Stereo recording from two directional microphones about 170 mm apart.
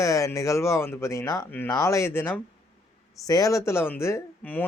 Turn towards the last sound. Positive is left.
turn(degrees=10)  # may be behind; listen again after turning